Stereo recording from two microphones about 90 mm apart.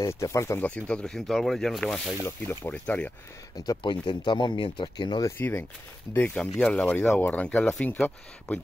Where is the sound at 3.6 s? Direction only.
65° left (ahead or behind).